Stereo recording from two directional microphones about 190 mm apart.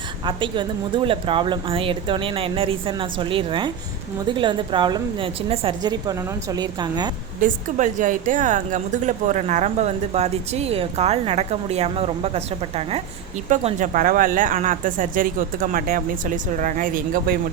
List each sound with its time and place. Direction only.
0.3 s speech: 25° right (ahead or behind)
7.4 s a woman's voice: 45° right (ahead or behind)